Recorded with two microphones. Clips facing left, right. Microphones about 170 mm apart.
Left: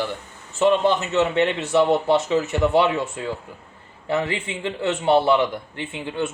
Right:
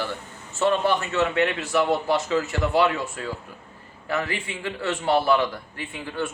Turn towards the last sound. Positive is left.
turn(degrees=25)  # may be behind; listen again after turning